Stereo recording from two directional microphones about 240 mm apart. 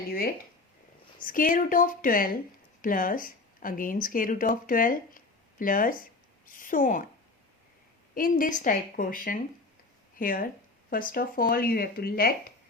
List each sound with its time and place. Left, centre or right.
0.1 s speech: left
8.1 s speech: left